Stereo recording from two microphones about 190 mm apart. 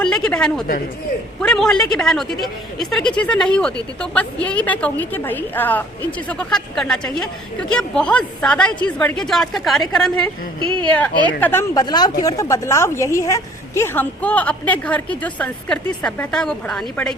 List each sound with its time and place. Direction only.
0.0 s a woman's voice: 5° left (ahead or behind)
10.6 s speech: 25° right (ahead or behind)
11.3 s a woman's voice: 10° left (ahead or behind)